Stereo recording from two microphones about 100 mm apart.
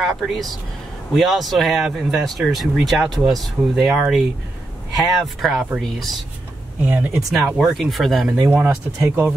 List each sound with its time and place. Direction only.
0.0 s speech: centre (ahead or behind)
5.2 s speech: centre (ahead or behind)
6.8 s speech: 15° right (ahead or behind)
7.2 s speech: 5° right (ahead or behind)
8.5 s speech: 15° right (ahead or behind)